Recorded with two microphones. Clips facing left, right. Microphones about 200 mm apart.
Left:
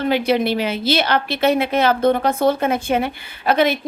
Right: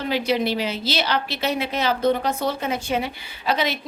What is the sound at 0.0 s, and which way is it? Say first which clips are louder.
A woman's voice: left 5 dB; 55° left (ahead or behind).